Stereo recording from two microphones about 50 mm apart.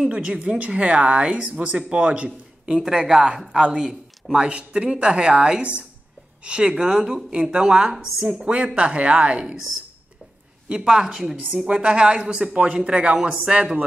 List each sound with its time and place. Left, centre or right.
0.1 s speech: right
6.7 s speech: centre
7.5 s speech: centre
7.9 s speech: centre
8.4 s speech: right
10.7 s speech: centre
12.7 s speech: centre